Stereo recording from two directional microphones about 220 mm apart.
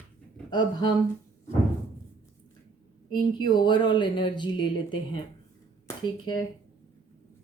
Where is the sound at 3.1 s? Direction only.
20° left (ahead or behind).